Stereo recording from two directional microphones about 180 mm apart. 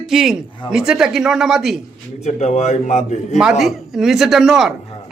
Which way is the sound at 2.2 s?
40° left (ahead or behind).